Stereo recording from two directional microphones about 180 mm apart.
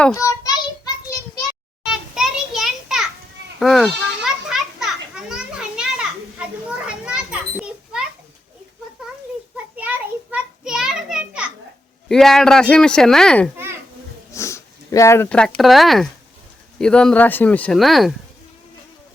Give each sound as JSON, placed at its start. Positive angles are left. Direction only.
{"t": 0.0, "sound": "child singing", "side_deg": 15}
{"t": 1.8, "sound": "a sound", "side_deg": -5}
{"t": 3.6, "sound": "goat", "side_deg": 0}
{"t": 9.7, "sound": "children playing", "side_deg": -10}
{"t": 12.0, "sound": "speech", "side_deg": 5}
{"t": 14.3, "sound": "speech", "side_deg": 15}